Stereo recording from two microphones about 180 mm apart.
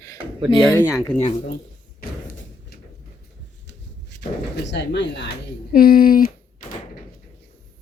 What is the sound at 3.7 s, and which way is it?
Speech, 70° left (ahead or behind).